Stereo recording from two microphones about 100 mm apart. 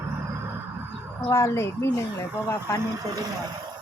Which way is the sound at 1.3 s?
30° left (ahead or behind).